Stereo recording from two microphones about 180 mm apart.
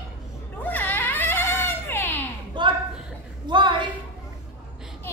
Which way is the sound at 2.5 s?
25° right (ahead or behind).